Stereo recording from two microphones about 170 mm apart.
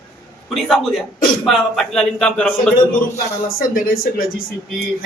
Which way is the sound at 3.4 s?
60° left (ahead or behind).